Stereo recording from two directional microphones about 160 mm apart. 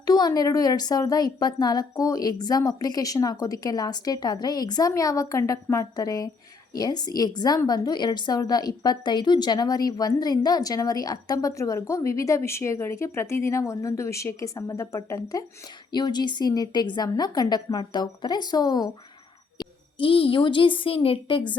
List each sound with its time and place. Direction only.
0.0 s a woman's voice: 25° left (ahead or behind)